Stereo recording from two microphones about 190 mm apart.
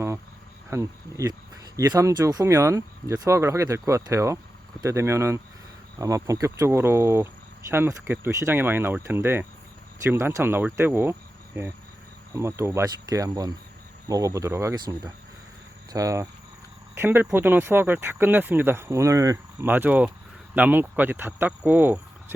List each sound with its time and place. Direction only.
0.7 s speech: 15° right (ahead or behind)
10.8 s cricket: 10° right (ahead or behind)
12.3 s speech: 15° right (ahead or behind)